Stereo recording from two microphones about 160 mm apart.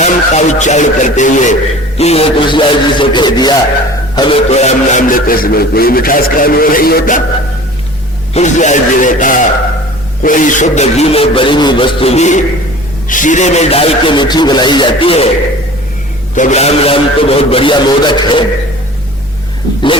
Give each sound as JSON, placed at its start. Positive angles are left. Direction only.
{"t": 0.0, "sound": "speech", "side_deg": 45}
{"t": 2.0, "sound": "a man's voice", "side_deg": 40}
{"t": 4.4, "sound": "speech", "side_deg": 45}
{"t": 8.3, "sound": "speech", "side_deg": 45}
{"t": 16.3, "sound": "speech", "side_deg": 50}